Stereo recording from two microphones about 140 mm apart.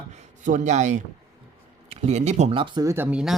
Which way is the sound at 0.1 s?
60° right (ahead or behind).